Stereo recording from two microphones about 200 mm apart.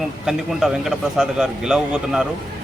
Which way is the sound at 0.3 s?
Centre (ahead or behind).